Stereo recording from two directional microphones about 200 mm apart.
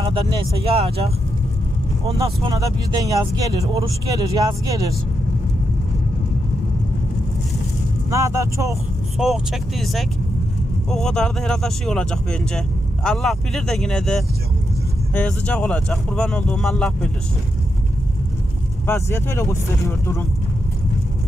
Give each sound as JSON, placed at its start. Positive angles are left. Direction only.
{"t": 0.0, "sound": "speech", "side_deg": -25}
{"t": 2.1, "sound": "speech", "side_deg": -15}
{"t": 8.1, "sound": "speech", "side_deg": -15}
{"t": 9.2, "sound": "speech", "side_deg": 0}
{"t": 18.9, "sound": "speech", "side_deg": 15}